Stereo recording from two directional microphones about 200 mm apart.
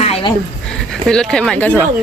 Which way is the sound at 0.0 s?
30° left (ahead or behind).